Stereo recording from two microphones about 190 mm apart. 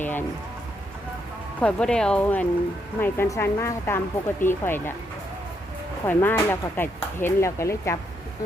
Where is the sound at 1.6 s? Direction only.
5° left (ahead or behind).